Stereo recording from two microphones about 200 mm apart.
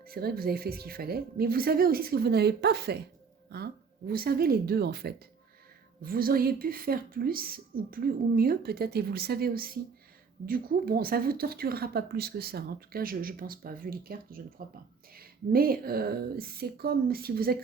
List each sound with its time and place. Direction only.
0.0 s a woman's voice: 50° right (ahead or behind)